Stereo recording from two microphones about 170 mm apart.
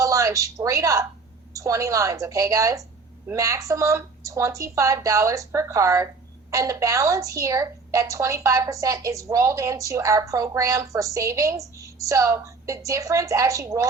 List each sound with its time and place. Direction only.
0.0 s a woman's voice: 20° right (ahead or behind)